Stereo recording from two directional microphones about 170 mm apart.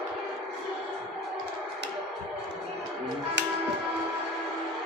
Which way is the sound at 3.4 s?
90° right.